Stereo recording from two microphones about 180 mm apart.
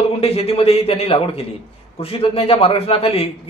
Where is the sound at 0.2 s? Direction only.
35° left (ahead or behind).